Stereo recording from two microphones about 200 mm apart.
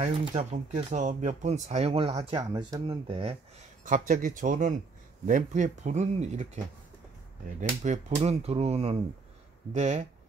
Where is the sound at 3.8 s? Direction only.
40° right (ahead or behind).